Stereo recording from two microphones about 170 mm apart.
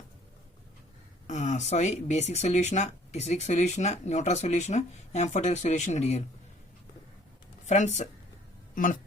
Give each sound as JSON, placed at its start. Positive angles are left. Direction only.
{"t": 1.3, "sound": "speech", "side_deg": 45}
{"t": 7.7, "sound": "speech", "side_deg": 45}